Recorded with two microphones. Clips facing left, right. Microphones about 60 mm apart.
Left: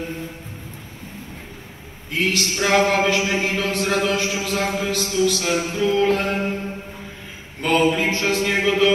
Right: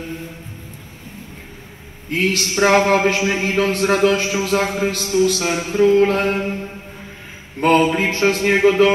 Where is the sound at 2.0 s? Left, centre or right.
Right.